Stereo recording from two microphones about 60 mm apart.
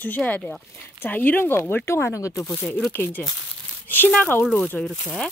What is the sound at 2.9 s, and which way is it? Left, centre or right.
Speech, left.